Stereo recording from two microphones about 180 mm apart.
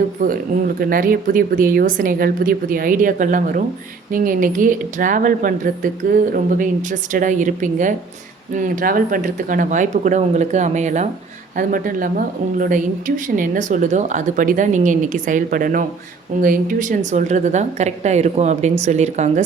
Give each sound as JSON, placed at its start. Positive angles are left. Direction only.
{"t": 0.2, "sound": "a woman's voice", "side_deg": -50}